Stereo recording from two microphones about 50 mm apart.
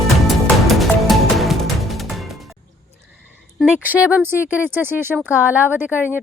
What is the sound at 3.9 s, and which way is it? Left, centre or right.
Speech, right.